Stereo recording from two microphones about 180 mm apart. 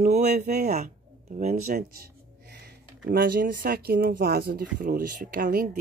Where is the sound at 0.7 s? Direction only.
55° right (ahead or behind).